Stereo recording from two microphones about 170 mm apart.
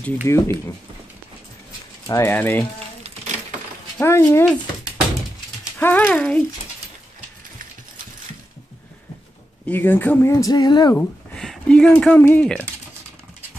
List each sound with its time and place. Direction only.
0.3 s speech: 15° left (ahead or behind)
2.0 s speech: 15° left (ahead or behind)
4.0 s speech: 15° left (ahead or behind)
5.8 s speech: 10° left (ahead or behind)
9.7 s speech: 10° left (ahead or behind)
11.0 s speech: 5° left (ahead or behind)